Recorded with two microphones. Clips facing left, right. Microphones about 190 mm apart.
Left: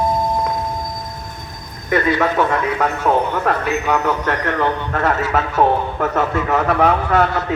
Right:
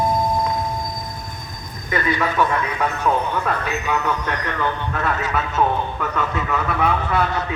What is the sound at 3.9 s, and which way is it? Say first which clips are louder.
A man's voice: left 4 dB; 50° left (ahead or behind).